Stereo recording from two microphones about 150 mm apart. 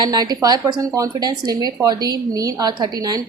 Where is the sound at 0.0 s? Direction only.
25° right (ahead or behind).